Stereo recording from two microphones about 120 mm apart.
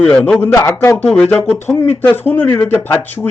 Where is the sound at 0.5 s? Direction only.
25° left (ahead or behind).